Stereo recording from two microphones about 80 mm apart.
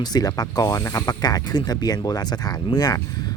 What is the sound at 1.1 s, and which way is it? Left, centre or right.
Speech, left.